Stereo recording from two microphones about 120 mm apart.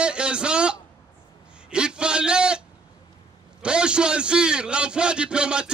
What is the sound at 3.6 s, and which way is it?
A man's voice, 10° right (ahead or behind).